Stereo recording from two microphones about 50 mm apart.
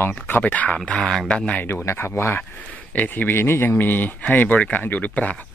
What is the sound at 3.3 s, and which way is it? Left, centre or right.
Speech, left.